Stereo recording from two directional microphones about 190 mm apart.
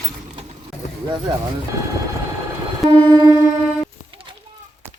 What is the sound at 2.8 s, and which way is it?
Vehicle, 25° right (ahead or behind).